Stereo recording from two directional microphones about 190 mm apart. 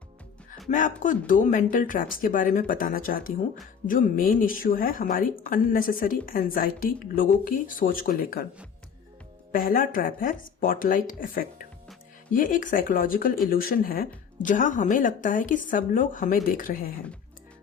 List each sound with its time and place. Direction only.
0.7 s a woman's voice: 45° left (ahead or behind)
9.5 s a woman's voice: 50° left (ahead or behind)